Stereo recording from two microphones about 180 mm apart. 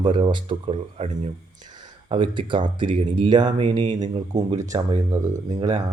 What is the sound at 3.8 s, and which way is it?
Speech, 40° right (ahead or behind).